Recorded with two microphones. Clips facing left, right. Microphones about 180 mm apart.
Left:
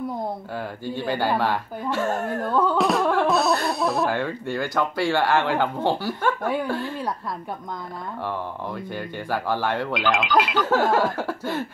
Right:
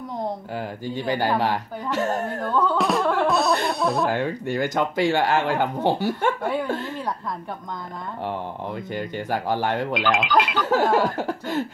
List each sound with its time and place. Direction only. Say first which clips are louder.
0.6 s speech: even; 15° right (ahead or behind)
2.4 s music: left 1 dB; 10° left (ahead or behind)
2.8 s music: left 1 dB; centre (ahead or behind)
3.8 s speech: right 1 dB; centre (ahead or behind)
4.1 s speech: right 1 dB; 15° right (ahead or behind)
8.3 s speech: right 1 dB; 15° right (ahead or behind)
9.9 s speech: even; centre (ahead or behind)
10.8 s speech: right 1 dB; 15° right (ahead or behind)